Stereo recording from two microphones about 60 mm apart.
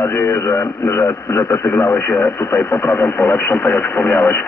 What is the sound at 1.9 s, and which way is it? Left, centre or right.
Speech, left.